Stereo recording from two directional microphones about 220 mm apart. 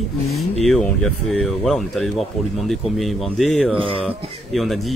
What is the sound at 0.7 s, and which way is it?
Speech, 5° left (ahead or behind).